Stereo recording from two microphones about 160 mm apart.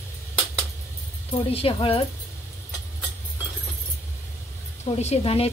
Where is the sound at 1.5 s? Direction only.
35° left (ahead or behind).